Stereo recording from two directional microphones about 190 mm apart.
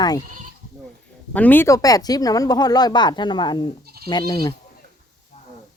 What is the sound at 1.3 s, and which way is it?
Speech, 10° left (ahead or behind).